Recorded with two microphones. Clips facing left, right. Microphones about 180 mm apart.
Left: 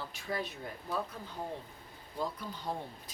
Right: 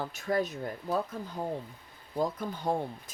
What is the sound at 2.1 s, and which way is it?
Speech, 50° right (ahead or behind).